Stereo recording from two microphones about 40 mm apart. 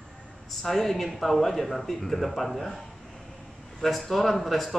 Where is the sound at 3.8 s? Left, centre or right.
Centre.